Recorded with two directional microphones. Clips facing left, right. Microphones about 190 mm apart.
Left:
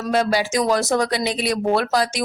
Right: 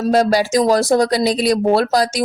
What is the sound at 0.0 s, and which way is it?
Speech, 40° right (ahead or behind).